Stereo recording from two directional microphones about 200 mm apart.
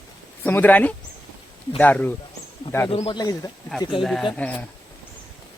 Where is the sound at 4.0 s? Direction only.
Centre (ahead or behind).